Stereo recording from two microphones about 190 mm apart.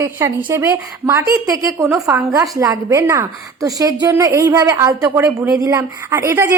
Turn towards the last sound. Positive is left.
turn(degrees=-15)  # may be behind; listen again after turning